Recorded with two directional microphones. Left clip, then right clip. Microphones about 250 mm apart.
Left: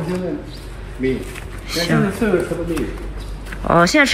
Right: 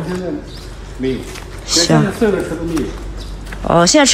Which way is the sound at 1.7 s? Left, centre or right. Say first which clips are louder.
Right 6 dB; centre.